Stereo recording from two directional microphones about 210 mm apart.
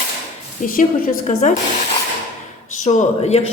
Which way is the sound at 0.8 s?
40° left (ahead or behind).